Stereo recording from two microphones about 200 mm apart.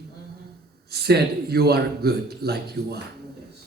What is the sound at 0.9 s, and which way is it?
A man's voice, 55° right (ahead or behind).